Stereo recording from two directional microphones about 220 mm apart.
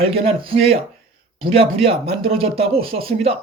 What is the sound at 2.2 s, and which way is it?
Speech, 25° right (ahead or behind).